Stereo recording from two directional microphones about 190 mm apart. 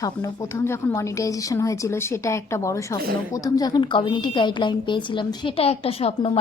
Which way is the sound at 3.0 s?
50° right (ahead or behind).